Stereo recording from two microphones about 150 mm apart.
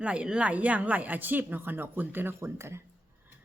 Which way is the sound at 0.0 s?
5° right (ahead or behind).